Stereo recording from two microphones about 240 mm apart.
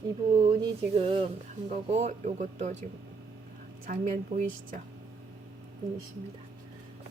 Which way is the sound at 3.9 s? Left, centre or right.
Right.